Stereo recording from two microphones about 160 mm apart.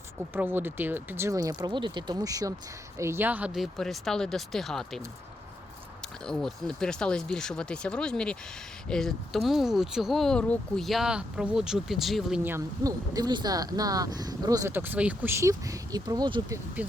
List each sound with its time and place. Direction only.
0.3 s speech: 10° right (ahead or behind)
6.2 s speech: 5° left (ahead or behind)
12.4 s speech: 15° right (ahead or behind)